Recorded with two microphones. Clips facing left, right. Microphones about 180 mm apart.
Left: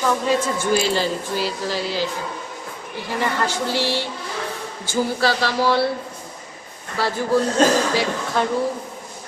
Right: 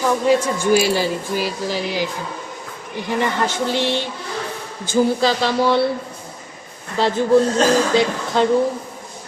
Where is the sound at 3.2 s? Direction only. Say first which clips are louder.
Even; 20° right (ahead or behind).